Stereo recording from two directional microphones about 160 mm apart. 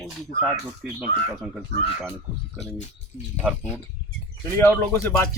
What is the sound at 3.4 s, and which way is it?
Speech, 10° right (ahead or behind).